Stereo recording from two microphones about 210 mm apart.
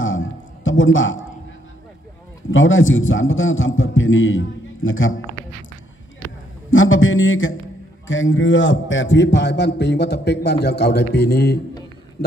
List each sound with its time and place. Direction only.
0.0 s a sound: 65° left (ahead or behind)
2.5 s a man's voice: 65° left (ahead or behind)
6.7 s a man's voice: 65° left (ahead or behind); by 11.6 s 50° left (ahead or behind)